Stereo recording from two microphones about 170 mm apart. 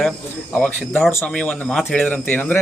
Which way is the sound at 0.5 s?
10° left (ahead or behind).